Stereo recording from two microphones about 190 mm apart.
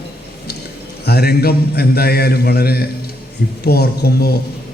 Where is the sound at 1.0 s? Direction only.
55° left (ahead or behind).